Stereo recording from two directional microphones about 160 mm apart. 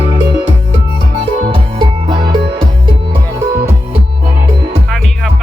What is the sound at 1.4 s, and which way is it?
Music, 30° right (ahead or behind).